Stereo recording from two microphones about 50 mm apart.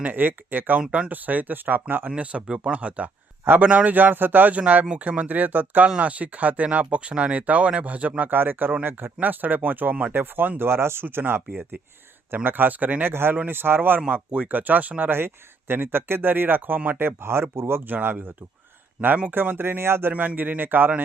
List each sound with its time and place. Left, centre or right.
0.0 s speech: right
0.8 s speech: right
1.1 s speech: right
2.0 s speech: right
3.4 s a man's voice: right
3.7 s speech: right
10.6 s speech: right
11.0 s speech: right
14.1 s speech: right
15.1 s speech: right
17.0 s speech: right
17.8 s speech: right
20.1 s speech: right